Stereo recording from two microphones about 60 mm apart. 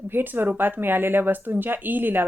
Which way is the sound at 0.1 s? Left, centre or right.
Right.